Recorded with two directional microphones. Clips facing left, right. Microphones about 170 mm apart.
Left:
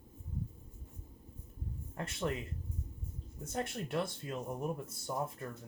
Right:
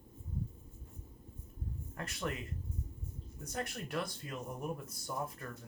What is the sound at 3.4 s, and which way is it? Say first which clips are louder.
Speech: left 3 dB; 25° left (ahead or behind).